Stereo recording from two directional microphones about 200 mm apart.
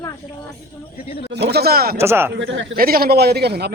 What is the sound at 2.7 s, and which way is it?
Speech, 50° right (ahead or behind).